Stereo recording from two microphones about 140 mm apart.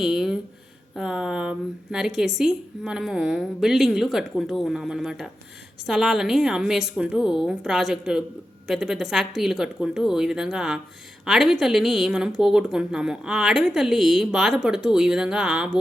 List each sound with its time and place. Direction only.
0.0 s a woman's voice: centre (ahead or behind)